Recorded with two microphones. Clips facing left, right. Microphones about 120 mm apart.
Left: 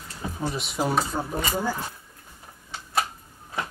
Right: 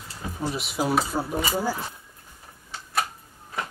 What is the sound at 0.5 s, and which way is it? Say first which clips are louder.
Speech: right 1 dB; 5° right (ahead or behind).